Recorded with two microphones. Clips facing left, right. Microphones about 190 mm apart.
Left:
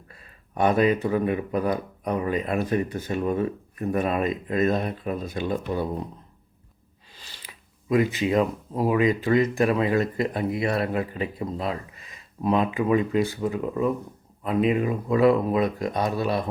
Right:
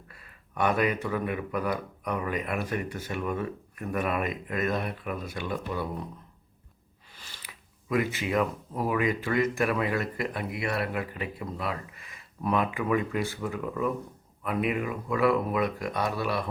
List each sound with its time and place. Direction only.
0.1 s speech: 25° left (ahead or behind)
7.4 s speech: 20° left (ahead or behind)